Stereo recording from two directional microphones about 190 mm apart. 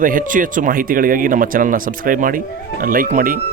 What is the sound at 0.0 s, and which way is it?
Speech, 45° right (ahead or behind).